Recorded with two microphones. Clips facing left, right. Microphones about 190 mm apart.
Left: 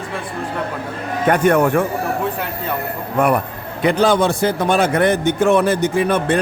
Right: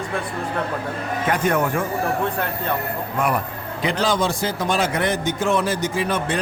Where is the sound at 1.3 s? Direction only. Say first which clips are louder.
Left 7 dB; 60° left (ahead or behind).